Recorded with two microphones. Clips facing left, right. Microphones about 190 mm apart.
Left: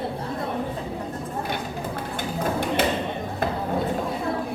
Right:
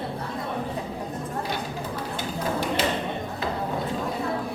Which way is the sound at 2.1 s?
55° left (ahead or behind).